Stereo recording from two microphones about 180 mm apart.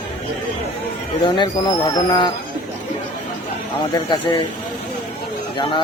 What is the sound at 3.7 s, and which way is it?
Speech, 25° left (ahead or behind).